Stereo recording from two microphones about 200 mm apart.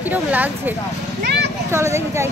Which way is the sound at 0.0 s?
10° right (ahead or behind).